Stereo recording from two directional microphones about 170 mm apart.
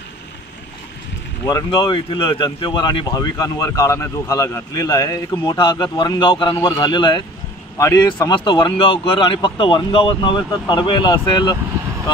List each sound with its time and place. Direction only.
1.4 s speech: 25° left (ahead or behind)